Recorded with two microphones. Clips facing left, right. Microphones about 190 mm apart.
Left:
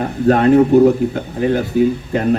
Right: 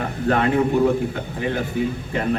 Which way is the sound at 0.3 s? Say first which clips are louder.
Left 8 dB; 40° left (ahead or behind).